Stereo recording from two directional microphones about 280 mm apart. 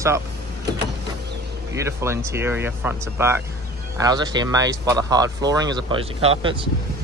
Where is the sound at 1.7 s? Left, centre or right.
Centre.